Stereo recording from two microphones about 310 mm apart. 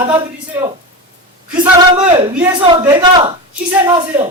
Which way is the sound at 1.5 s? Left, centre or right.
Centre.